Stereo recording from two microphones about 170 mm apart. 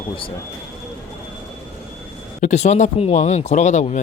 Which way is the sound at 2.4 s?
45° left (ahead or behind).